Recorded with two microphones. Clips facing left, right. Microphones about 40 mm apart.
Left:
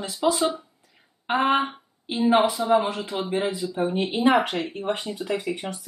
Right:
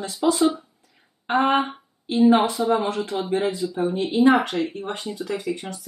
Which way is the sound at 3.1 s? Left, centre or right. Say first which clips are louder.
Right 1 dB; left.